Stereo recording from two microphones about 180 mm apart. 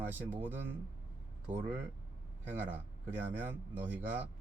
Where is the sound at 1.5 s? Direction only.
45° right (ahead or behind).